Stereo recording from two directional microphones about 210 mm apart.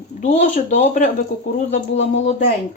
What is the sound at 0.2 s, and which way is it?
Speech, 35° left (ahead or behind).